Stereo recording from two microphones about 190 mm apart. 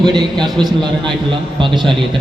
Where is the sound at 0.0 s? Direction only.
25° right (ahead or behind).